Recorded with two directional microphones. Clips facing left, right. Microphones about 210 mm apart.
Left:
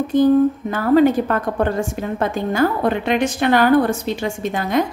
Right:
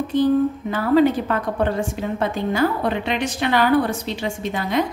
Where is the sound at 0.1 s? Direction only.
45° left (ahead or behind).